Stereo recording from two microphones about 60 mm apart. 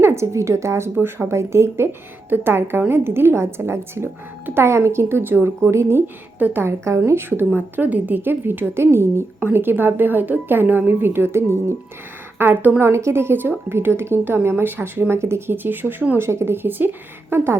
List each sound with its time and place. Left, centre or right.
0.0 s a woman's voice: right
6.4 s a woman's voice: right
6.7 s a woman's voice: right
7.1 s a woman's voice: right
12.4 s a woman's voice: right
12.8 s a woman's voice: right
16.1 s a woman's voice: right
16.6 s speech: right